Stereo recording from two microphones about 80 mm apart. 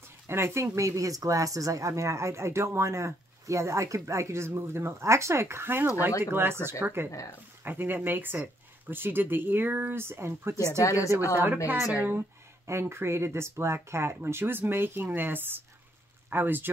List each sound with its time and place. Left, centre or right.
0.3 s speech: right
7.1 s speech: left
7.6 s speech: right
10.8 s speech: left
11.3 s speech: right
12.6 s speech: right